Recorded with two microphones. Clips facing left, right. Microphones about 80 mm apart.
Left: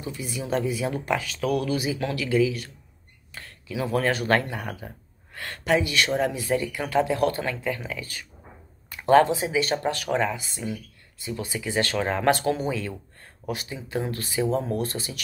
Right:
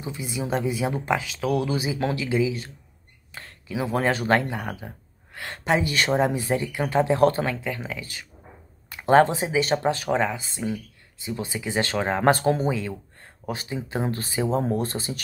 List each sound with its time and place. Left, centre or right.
0.0 s speech: right
3.3 s whispering: right
3.7 s speech: right
5.6 s speech: right
7.7 s speech: right
8.8 s a sound: right
9.2 s speech: right
12.7 s speech: right